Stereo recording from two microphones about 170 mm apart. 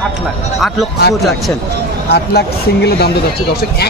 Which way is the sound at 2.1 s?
70° left (ahead or behind).